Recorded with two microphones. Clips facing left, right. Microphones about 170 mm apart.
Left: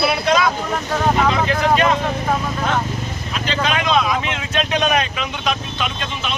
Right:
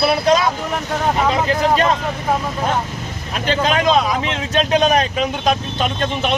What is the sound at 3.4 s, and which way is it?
Speech, 40° right (ahead or behind).